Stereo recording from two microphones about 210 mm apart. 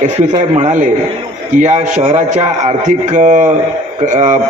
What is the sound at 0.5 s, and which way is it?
A man's voice, 35° right (ahead or behind).